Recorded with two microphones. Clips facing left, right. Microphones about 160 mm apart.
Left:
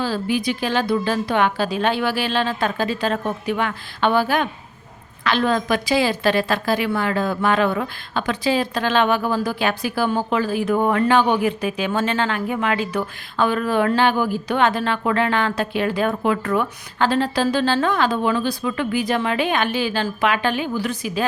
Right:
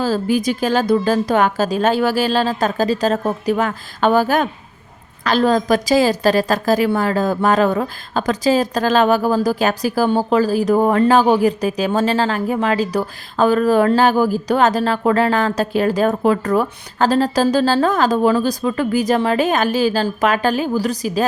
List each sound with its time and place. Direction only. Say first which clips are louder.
0.0 s a woman's voice: right 4 dB; 40° right (ahead or behind)